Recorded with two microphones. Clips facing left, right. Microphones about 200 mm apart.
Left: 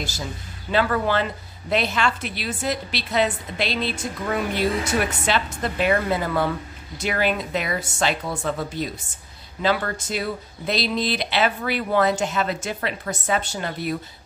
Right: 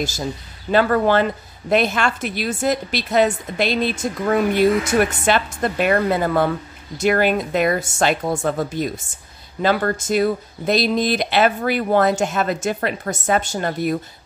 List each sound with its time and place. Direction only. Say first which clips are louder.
0.7 s a woman's voice: right 5 dB; 50° right (ahead or behind)